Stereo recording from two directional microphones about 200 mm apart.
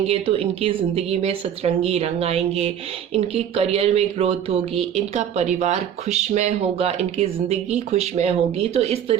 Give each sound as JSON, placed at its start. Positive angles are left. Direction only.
{"t": 0.0, "sound": "speech", "side_deg": -30}